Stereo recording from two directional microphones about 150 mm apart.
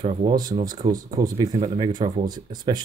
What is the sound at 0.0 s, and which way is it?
Speech, 30° right (ahead or behind).